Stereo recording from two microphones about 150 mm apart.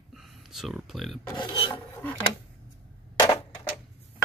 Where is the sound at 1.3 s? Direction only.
30° left (ahead or behind).